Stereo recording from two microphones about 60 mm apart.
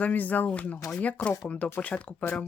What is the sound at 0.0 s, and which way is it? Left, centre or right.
Speech, left.